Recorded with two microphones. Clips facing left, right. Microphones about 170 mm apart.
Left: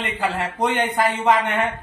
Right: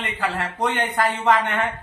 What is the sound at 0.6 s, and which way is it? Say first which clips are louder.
Speech: left 2 dB; 10° left (ahead or behind).